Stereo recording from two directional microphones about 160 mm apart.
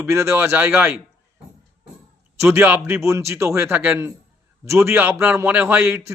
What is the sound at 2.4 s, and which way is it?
A man's voice, 15° right (ahead or behind).